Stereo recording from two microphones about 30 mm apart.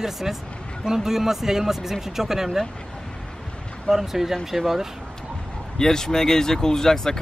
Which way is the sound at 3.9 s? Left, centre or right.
Centre.